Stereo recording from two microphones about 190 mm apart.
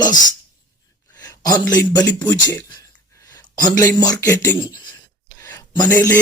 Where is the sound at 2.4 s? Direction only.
20° left (ahead or behind).